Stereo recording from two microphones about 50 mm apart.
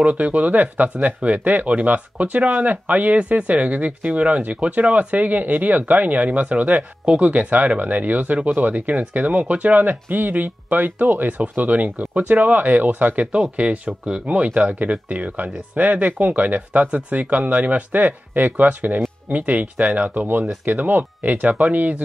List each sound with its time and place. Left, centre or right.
0.0 s speech: right
13.3 s speech: right